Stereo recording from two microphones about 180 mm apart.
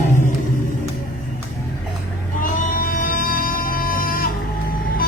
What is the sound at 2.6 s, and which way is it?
Music, 50° left (ahead or behind).